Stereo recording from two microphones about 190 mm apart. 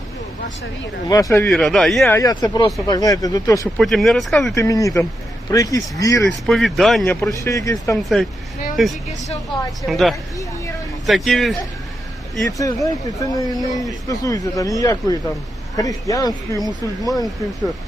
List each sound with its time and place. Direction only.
1.0 s speech: 20° left (ahead or behind)
1.5 s speech: centre (ahead or behind)
2.0 s speech: 15° left (ahead or behind)
3.8 s speech: centre (ahead or behind)
4.5 s speech: 15° left (ahead or behind)
6.2 s speech: centre (ahead or behind)
7.3 s speech: 15° left (ahead or behind)
8.7 s speech: centre (ahead or behind)
12.5 s speech: 15° left (ahead or behind)